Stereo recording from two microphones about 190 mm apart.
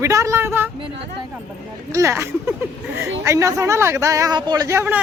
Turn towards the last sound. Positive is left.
turn(degrees=-10)  # may be behind; listen again after turning